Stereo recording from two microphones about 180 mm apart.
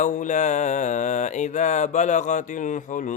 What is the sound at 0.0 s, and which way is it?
Speech, 45° left (ahead or behind).